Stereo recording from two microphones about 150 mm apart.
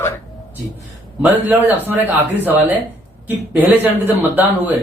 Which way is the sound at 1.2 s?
10° right (ahead or behind).